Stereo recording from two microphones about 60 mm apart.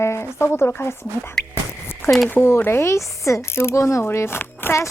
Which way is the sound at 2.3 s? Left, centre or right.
Left.